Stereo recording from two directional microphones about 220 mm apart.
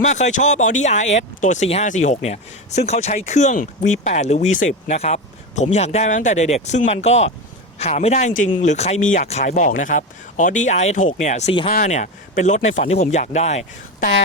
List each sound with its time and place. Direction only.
0.0 s speech: 30° left (ahead or behind)